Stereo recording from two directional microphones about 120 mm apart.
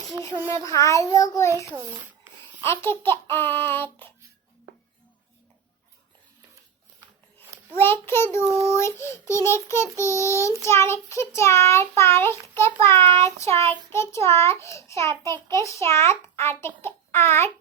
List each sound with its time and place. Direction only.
0.6 s a child's voice: 25° left (ahead or behind)
1.5 s babbling: 20° right (ahead or behind)
2.6 s a child's voice: 20° left (ahead or behind)
7.8 s a child's voice: 20° left (ahead or behind)